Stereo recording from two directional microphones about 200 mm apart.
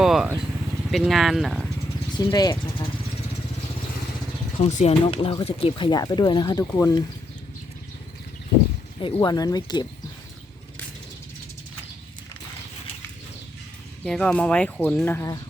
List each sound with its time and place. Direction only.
0.0 s speech: centre (ahead or behind)
2.1 s speech: 20° left (ahead or behind)
4.6 s speech: 35° left (ahead or behind); by 6.9 s 15° left (ahead or behind)
9.0 s speech: 25° left (ahead or behind)
14.0 s speech: 5° left (ahead or behind)